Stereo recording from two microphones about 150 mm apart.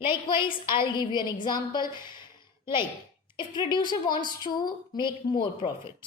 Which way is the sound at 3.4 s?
30° left (ahead or behind).